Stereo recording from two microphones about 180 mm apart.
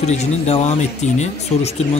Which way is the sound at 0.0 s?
40° left (ahead or behind).